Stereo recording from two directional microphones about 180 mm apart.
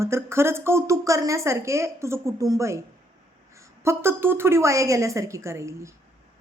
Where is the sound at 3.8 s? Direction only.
15° right (ahead or behind).